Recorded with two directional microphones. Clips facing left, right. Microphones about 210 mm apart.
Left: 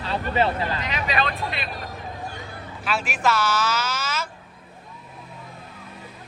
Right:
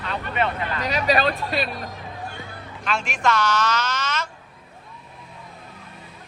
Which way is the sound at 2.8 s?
5° left (ahead or behind).